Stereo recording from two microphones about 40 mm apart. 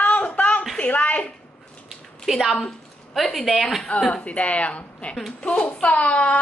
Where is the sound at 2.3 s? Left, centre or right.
Centre.